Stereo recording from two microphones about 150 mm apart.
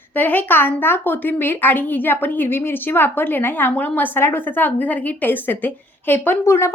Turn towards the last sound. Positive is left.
turn(degrees=15)  # may be behind; listen again after turning